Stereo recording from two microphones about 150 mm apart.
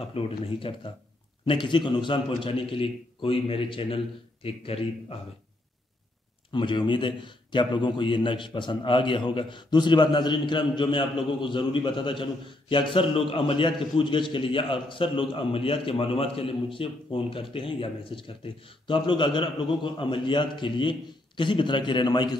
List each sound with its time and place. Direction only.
0.0 s a man's voice: 40° left (ahead or behind)
6.5 s a man's voice: 30° left (ahead or behind)